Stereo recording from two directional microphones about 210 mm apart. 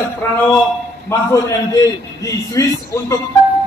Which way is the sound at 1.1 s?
10° left (ahead or behind).